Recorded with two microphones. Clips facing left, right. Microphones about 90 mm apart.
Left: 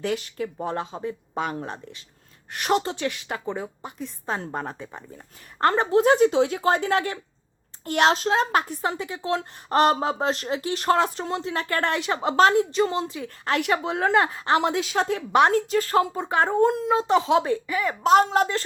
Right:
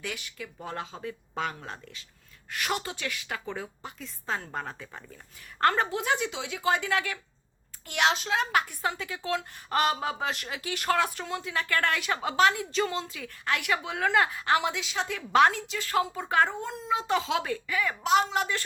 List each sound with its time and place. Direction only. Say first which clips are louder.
0.0 s a woman's voice: left 11 dB; 35° left (ahead or behind)
2.6 s a woman's voice: left 10 dB; 25° left (ahead or behind)
12.7 s speech: left 6 dB; 25° left (ahead or behind)
14.7 s speech: left 8 dB; 45° left (ahead or behind)
15.3 s a woman's voice: left 2 dB; 20° left (ahead or behind)
15.5 s speech: left 8 dB; 40° left (ahead or behind)
16.2 s a woman's voice: left 2 dB; 25° left (ahead or behind)
16.5 s a child's voice: left 15 dB; 55° left (ahead or behind)
17.1 s a woman's voice: left 9 dB; 25° left (ahead or behind)
18.0 s speech: left 8 dB; 45° left (ahead or behind)